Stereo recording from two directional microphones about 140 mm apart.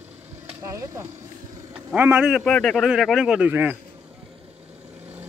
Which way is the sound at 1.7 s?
10° right (ahead or behind).